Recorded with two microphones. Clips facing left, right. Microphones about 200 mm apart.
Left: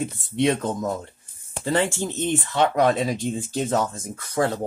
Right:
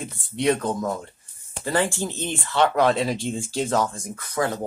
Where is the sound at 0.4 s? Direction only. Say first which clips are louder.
Even; 25° left (ahead or behind).